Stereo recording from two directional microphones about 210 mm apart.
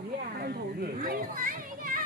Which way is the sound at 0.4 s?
45° right (ahead or behind).